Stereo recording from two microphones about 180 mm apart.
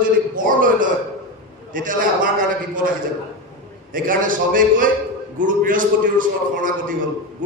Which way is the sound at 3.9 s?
50° right (ahead or behind).